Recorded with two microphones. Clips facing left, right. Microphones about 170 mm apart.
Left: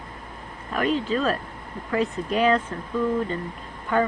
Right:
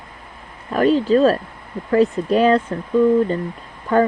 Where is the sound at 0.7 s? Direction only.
35° right (ahead or behind).